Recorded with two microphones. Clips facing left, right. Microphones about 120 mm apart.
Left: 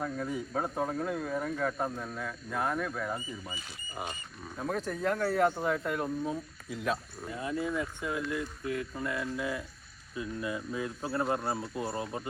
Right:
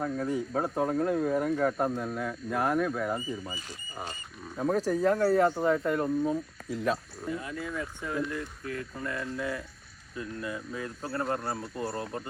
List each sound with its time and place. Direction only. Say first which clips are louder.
0.0 s speech: right 4 dB; centre (ahead or behind)
3.5 s speech: right 1 dB; 10° left (ahead or behind)
4.5 s speech: right 7 dB; 5° right (ahead or behind)
7.3 s speech: left 7 dB; 25° left (ahead or behind)
7.7 s speech: left 1 dB; 10° left (ahead or behind)